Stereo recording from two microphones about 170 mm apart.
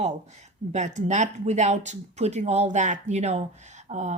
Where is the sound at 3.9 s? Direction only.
45° right (ahead or behind).